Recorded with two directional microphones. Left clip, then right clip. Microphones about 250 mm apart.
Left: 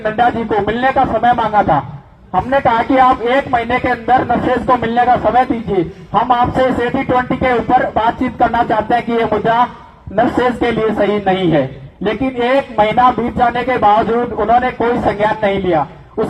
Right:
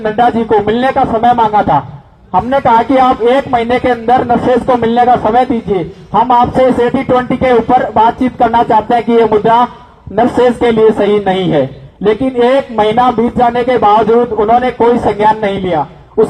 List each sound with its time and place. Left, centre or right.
0.0 s speech: right